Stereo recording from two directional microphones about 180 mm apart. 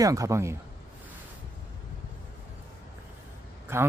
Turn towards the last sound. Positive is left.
turn(degrees=-15)  # may be behind; listen again after turning